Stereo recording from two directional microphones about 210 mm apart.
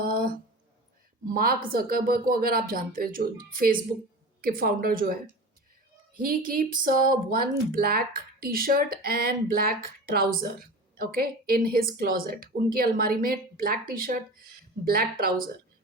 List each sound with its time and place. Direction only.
0.0 s a sound: 45° right (ahead or behind)
1.3 s speech: 45° right (ahead or behind)
6.1 s speech: 45° right (ahead or behind)